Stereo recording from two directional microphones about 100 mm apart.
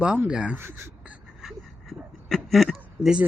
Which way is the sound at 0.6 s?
25° right (ahead or behind).